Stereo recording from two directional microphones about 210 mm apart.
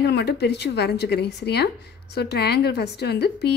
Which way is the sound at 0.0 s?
50° left (ahead or behind).